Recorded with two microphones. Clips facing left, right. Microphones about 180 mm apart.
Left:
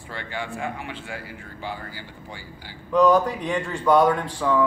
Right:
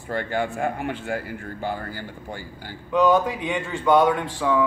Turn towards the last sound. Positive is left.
turn(degrees=0)  # may be behind; listen again after turning